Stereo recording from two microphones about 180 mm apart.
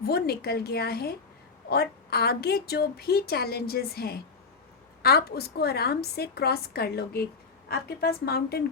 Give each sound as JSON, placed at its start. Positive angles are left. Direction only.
{"t": 0.0, "sound": "a woman's voice", "side_deg": 60}